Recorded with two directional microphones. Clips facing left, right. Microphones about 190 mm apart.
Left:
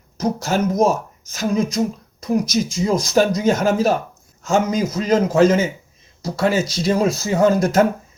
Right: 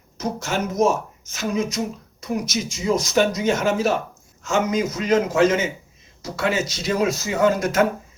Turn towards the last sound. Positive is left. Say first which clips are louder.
# left 4 dB
turn(degrees=35)  # may be behind; listen again after turning